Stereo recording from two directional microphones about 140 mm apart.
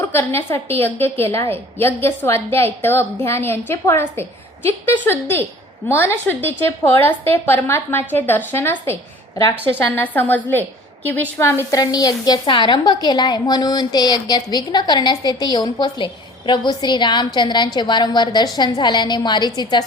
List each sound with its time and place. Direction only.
0.0 s a woman's voice: 15° left (ahead or behind)